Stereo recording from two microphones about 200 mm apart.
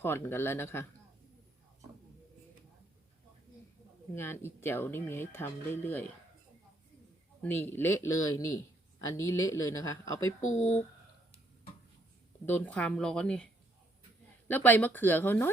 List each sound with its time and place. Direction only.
0.0 s speech: 10° left (ahead or behind)
4.1 s speech: 10° left (ahead or behind)
7.4 s speech: 10° left (ahead or behind)
10.4 s speech: 35° left (ahead or behind)
12.5 s speech: 10° left (ahead or behind)